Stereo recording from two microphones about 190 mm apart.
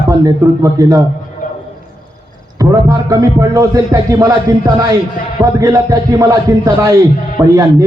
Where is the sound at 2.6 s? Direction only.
20° right (ahead or behind).